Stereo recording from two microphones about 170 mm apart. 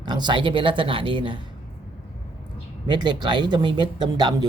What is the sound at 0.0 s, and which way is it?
Speech, 25° right (ahead or behind).